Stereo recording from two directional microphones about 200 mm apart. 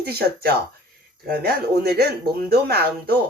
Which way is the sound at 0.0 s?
50° right (ahead or behind).